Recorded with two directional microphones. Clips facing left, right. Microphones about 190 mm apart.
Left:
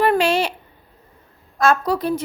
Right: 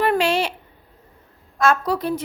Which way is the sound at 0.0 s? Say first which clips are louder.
Left 2 dB; 40° left (ahead or behind).